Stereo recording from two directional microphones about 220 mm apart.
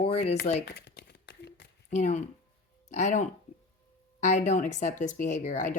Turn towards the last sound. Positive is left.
turn(degrees=35)  # may be behind; listen again after turning